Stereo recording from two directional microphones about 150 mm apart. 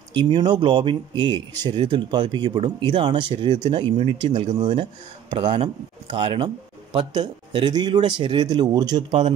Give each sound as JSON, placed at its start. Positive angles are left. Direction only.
{"t": 0.1, "sound": "speech", "side_deg": -30}